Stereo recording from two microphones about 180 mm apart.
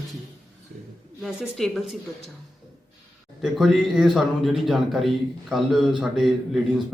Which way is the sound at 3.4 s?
Centre (ahead or behind).